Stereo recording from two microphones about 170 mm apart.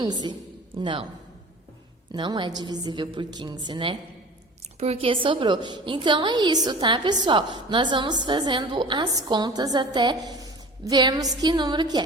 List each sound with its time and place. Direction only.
0.0 s a woman's voice: 25° right (ahead or behind)
2.1 s a woman's voice: 25° right (ahead or behind)